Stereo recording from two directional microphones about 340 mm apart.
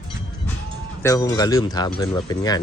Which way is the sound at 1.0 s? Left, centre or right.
Centre.